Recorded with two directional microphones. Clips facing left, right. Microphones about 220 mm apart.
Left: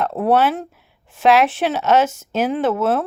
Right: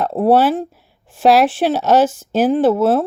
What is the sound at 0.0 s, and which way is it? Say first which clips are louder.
Speech: right 3 dB; 35° right (ahead or behind).